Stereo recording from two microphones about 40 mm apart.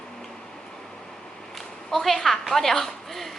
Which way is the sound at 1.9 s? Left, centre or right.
Centre.